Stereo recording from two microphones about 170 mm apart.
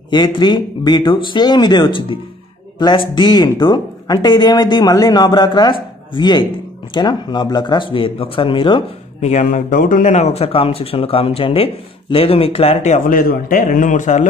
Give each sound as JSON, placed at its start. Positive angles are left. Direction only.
{"t": 0.1, "sound": "speech", "side_deg": 25}
{"t": 9.3, "sound": "speech", "side_deg": 50}